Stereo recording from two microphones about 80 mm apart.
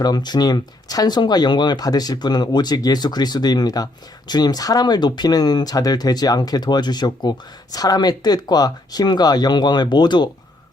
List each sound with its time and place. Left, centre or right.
0.0 s speech: left